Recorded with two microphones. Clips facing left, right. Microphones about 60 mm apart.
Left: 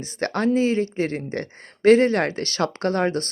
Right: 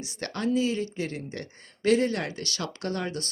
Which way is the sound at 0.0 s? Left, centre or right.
Left.